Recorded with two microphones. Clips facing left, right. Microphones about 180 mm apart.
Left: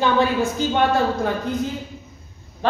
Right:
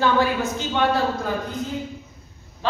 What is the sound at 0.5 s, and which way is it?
Speech, 50° left (ahead or behind).